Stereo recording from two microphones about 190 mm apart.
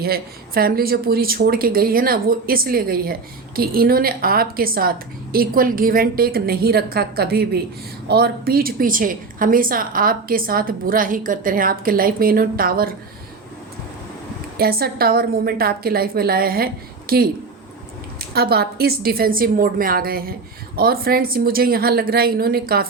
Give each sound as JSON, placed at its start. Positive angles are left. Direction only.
{"t": 0.0, "sound": "speech", "side_deg": -50}
{"t": 14.6, "sound": "speech", "side_deg": -55}
{"t": 18.3, "sound": "speech", "side_deg": -55}